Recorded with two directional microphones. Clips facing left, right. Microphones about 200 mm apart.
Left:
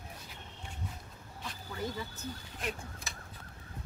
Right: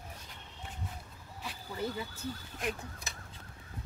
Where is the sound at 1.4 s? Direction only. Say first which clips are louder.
Right 2 dB; 10° right (ahead or behind).